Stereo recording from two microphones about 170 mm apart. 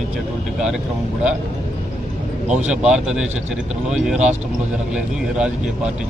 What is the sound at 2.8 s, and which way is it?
Speech, 5° right (ahead or behind).